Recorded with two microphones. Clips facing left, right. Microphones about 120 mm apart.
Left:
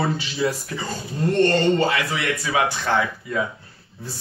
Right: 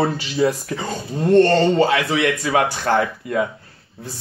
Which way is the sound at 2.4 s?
55° right (ahead or behind).